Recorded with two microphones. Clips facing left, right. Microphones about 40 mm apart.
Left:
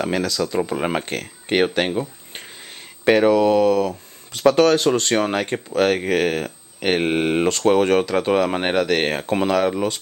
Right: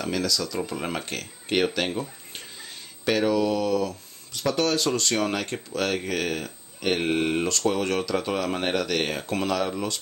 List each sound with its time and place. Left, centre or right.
0.0 s speech: left
2.3 s a sound: left
4.3 s speech: left
4.7 s speech: left